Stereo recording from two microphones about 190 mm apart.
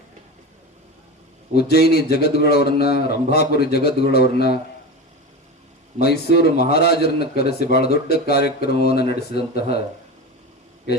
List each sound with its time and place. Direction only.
1.5 s a man's voice: 55° left (ahead or behind)
6.0 s a man's voice: 55° left (ahead or behind)